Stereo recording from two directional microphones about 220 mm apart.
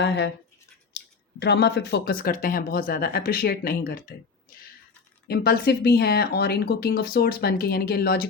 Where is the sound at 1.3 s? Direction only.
50° left (ahead or behind).